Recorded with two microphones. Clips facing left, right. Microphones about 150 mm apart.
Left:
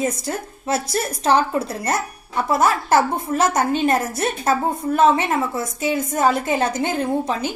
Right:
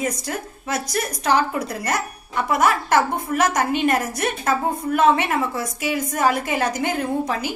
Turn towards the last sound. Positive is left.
turn(degrees=25)  # may be behind; listen again after turning